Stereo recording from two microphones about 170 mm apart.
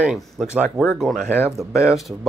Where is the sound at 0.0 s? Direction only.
5° right (ahead or behind).